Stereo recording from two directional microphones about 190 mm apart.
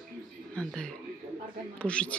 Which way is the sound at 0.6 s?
5° left (ahead or behind).